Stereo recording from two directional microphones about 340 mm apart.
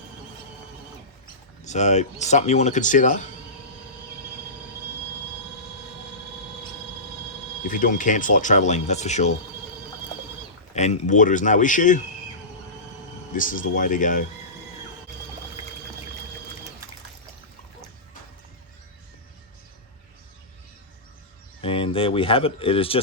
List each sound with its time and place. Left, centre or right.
1.6 s speech: centre
7.7 s speech: left
10.8 s speech: centre
13.3 s speech: left
21.6 s speech: centre